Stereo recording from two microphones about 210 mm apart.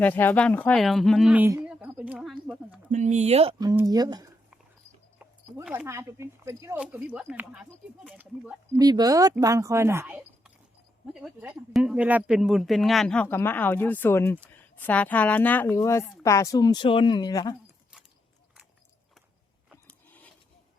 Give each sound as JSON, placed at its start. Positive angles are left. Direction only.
{"t": 0.0, "sound": "speech", "side_deg": 10}
{"t": 1.7, "sound": "a sound", "side_deg": -5}
{"t": 2.9, "sound": "speech", "side_deg": -35}
{"t": 3.6, "sound": "speech", "side_deg": -15}
{"t": 8.8, "sound": "speech", "side_deg": -20}
{"t": 10.1, "sound": "a sound", "side_deg": -5}
{"t": 11.1, "sound": "a woman's voice", "side_deg": -5}
{"t": 19.9, "sound": "rub", "side_deg": 5}